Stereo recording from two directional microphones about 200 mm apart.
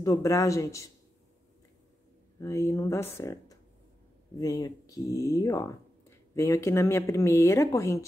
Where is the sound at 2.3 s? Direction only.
15° left (ahead or behind).